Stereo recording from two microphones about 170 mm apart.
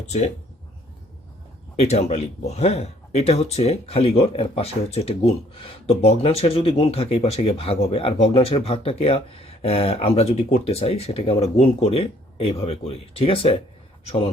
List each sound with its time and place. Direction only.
1.8 s speech: 40° left (ahead or behind)